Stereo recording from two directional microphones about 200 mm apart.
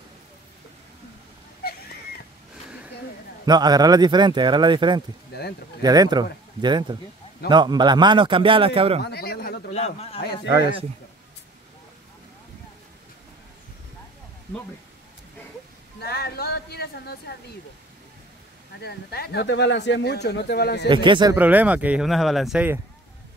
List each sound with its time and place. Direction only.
1.6 s wheeze: 50° left (ahead or behind)
3.4 s speech: 20° right (ahead or behind)
9.0 s a man's voice: 50° left (ahead or behind)
9.7 s a man's voice: 35° left (ahead or behind)
10.2 s a man's voice: 55° left (ahead or behind)
16.0 s a sound: 50° left (ahead or behind)
18.8 s speech: 55° left (ahead or behind)
20.9 s speech: 25° right (ahead or behind)
21.4 s speech: 10° right (ahead or behind)